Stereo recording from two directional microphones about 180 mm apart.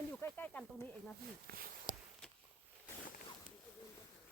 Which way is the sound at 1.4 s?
55° right (ahead or behind).